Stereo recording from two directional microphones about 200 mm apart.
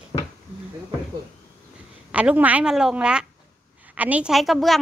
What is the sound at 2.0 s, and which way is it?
A woman's voice, 5° right (ahead or behind).